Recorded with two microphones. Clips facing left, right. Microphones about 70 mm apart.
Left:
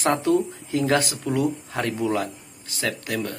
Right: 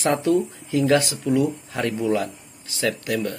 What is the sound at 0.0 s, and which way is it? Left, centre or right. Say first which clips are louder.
Speech: right 1 dB; left.